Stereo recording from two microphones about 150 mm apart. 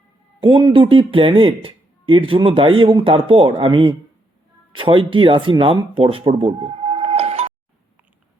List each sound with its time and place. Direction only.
0.4 s speech: 35° right (ahead or behind)